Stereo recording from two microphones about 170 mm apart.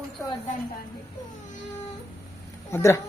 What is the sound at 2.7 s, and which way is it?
Speech, 15° left (ahead or behind).